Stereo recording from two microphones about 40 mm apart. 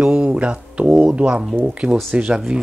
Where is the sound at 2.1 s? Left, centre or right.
Right.